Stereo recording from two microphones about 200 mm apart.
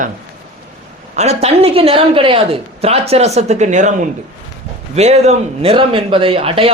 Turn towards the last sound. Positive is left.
turn(degrees=-30)  # may be behind; listen again after turning